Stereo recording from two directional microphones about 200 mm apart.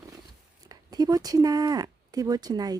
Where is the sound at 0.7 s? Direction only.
20° right (ahead or behind).